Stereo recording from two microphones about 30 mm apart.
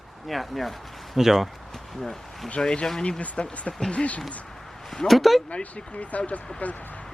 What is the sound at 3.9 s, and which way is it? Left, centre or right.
Speech, left.